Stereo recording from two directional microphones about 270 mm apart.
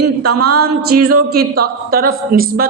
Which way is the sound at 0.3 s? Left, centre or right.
Right.